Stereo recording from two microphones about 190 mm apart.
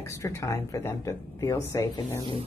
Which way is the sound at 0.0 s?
15° left (ahead or behind).